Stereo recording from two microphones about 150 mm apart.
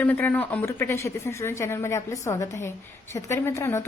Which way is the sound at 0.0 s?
10° left (ahead or behind).